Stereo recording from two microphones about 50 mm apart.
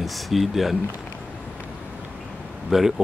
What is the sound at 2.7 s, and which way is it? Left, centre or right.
Speech, centre.